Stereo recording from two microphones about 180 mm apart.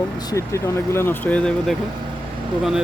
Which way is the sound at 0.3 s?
15° left (ahead or behind).